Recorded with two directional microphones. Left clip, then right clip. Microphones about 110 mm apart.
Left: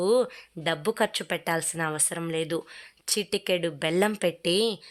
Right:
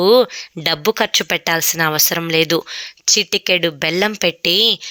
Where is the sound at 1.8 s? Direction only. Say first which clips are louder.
Right 13 dB; 35° right (ahead or behind).